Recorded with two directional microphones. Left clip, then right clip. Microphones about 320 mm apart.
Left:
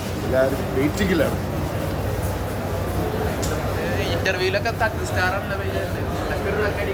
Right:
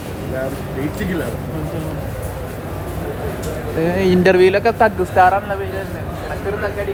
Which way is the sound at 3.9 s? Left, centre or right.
Centre.